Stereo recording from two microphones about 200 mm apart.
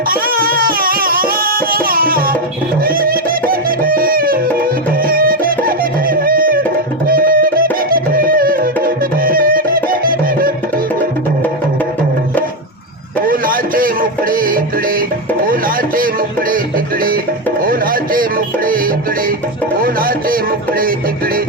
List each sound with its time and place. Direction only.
0.1 s music: 45° right (ahead or behind)
13.2 s music: 45° right (ahead or behind)
17.6 s music: 45° right (ahead or behind)